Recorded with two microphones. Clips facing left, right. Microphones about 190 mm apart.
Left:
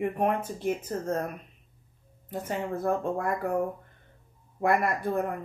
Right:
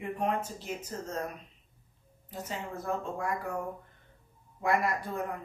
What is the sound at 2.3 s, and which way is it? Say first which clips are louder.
Speech: left 7 dB; 55° left (ahead or behind).